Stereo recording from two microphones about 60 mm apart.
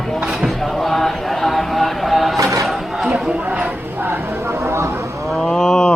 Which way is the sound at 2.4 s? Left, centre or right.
Right.